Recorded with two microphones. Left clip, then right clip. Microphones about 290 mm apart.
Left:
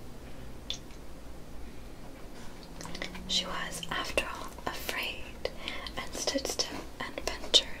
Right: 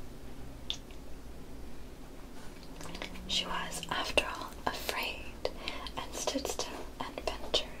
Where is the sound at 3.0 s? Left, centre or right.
Centre.